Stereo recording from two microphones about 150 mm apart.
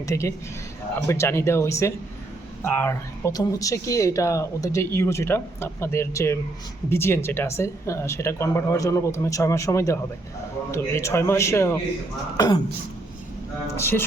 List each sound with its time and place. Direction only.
0.0 s speech: 20° left (ahead or behind)
13.7 s speech: 15° left (ahead or behind)